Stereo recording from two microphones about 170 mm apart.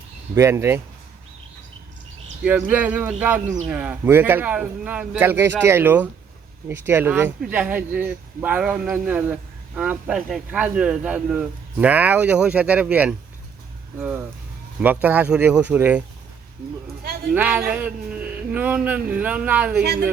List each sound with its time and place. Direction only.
0.3 s speech: 15° right (ahead or behind)
2.4 s speech: 10° right (ahead or behind)
17.3 s speech: 10° right (ahead or behind)
19.8 s a woman's voice: 75° right (ahead or behind)